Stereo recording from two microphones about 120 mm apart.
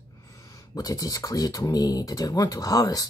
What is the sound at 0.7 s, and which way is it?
Speech, 30° left (ahead or behind).